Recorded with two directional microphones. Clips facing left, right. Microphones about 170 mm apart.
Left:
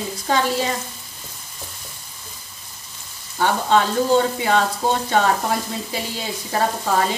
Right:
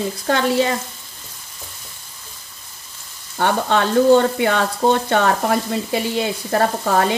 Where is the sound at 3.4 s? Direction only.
60° right (ahead or behind).